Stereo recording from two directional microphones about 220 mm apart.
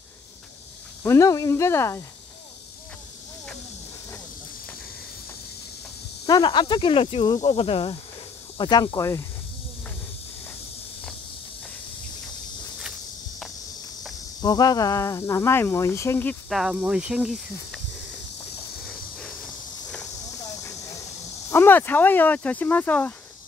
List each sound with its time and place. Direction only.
1.0 s speech: 15° left (ahead or behind)
6.2 s speech: 20° left (ahead or behind)
14.4 s speech: 15° left (ahead or behind); by 17.7 s centre (ahead or behind)
21.5 s speech: 10° left (ahead or behind)